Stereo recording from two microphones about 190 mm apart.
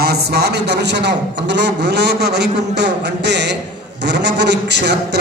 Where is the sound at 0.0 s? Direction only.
60° right (ahead or behind).